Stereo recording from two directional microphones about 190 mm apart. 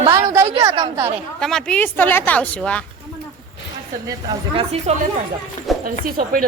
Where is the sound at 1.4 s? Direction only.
5° left (ahead or behind).